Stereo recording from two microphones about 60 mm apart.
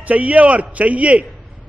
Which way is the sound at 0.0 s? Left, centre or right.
Right.